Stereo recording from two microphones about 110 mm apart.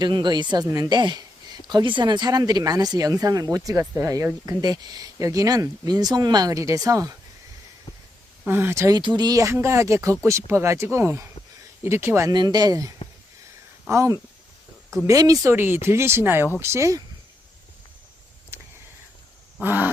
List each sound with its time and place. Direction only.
0.0 s speech: 40° right (ahead or behind)
8.4 s speech: 20° right (ahead or behind)
9.0 s speech: 40° right (ahead or behind); by 12.3 s 25° right (ahead or behind)
12.3 s speech: 40° right (ahead or behind)
13.9 s speech: 30° right (ahead or behind)
15.5 s speech: 20° right (ahead or behind)
19.6 s a sound: 15° right (ahead or behind)